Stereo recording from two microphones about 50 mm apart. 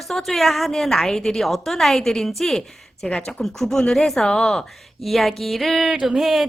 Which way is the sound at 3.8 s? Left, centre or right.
Left.